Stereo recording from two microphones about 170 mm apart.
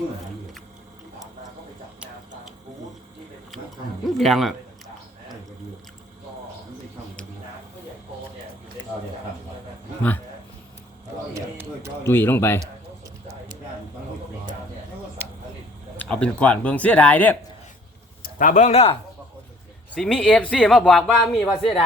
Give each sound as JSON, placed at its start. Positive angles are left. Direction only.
{"t": 4.0, "sound": "speech", "side_deg": 0}
{"t": 11.3, "sound": "a sound", "side_deg": -15}
{"t": 12.0, "sound": "speech", "side_deg": 10}
{"t": 16.0, "sound": "speech", "side_deg": 5}
{"t": 18.2, "sound": "speech", "side_deg": 50}
{"t": 19.9, "sound": "speech", "side_deg": 5}